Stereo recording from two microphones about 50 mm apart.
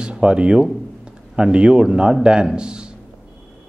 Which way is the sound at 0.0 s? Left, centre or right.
Centre.